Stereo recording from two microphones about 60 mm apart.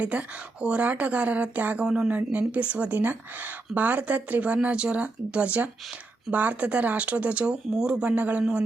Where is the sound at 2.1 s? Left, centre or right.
Right.